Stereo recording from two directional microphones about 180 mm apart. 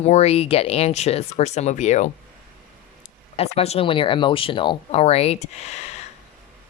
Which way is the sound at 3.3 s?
35° left (ahead or behind).